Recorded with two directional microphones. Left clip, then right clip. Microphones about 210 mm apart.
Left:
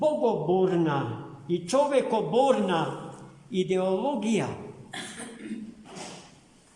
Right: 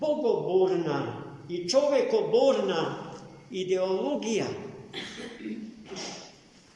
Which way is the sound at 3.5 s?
55° left (ahead or behind).